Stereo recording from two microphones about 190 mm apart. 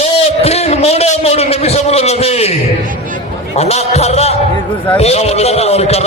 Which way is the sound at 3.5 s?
35° left (ahead or behind).